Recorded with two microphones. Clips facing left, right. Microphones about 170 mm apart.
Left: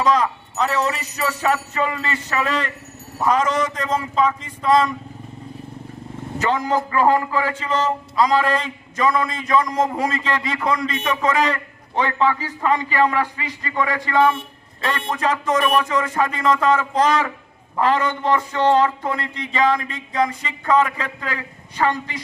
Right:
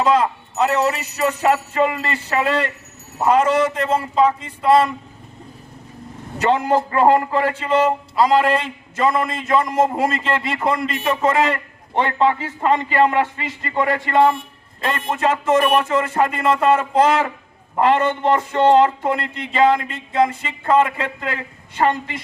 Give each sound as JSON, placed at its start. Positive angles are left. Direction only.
{"t": 0.0, "sound": "a man's voice", "side_deg": -30}
{"t": 6.4, "sound": "a man's voice", "side_deg": -30}